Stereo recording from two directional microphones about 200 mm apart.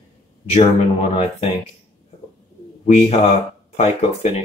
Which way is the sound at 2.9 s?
30° left (ahead or behind).